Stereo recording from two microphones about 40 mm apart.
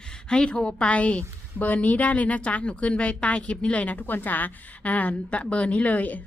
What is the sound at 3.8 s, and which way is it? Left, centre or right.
Speech, left.